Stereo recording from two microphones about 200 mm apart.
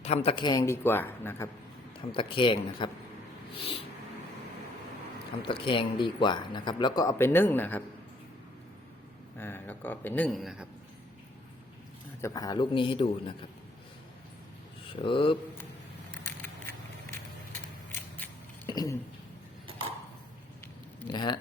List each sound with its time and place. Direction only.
0.0 s speech: 30° left (ahead or behind); by 1.5 s 10° left (ahead or behind)
2.1 s speech: 25° left (ahead or behind)
5.4 s speech: 25° left (ahead or behind); by 7.8 s 10° left (ahead or behind)
9.4 s speech: 10° left (ahead or behind)
12.2 s speech: 20° left (ahead or behind)
14.8 s speech: 25° left (ahead or behind)
18.7 s a sound: 20° left (ahead or behind)
21.1 s speech: 20° left (ahead or behind)